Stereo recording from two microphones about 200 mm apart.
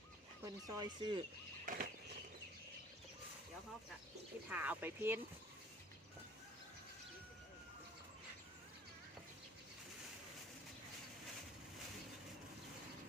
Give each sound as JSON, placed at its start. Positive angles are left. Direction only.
{"t": 0.4, "sound": "speech", "side_deg": -20}
{"t": 1.6, "sound": "bird flight", "side_deg": -45}
{"t": 4.4, "sound": "speech", "side_deg": -5}